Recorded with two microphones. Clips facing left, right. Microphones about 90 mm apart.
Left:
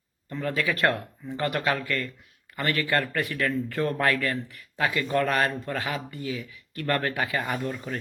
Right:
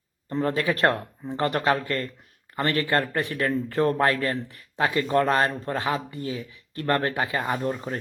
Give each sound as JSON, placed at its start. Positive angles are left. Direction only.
{"t": 0.3, "sound": "speech", "side_deg": -35}